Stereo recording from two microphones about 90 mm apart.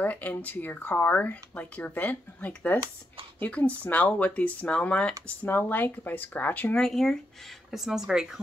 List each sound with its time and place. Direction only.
0.0 s speech: 20° left (ahead or behind)
6.9 s speech: 5° left (ahead or behind)